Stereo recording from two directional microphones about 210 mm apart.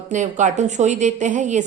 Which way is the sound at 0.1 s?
35° right (ahead or behind).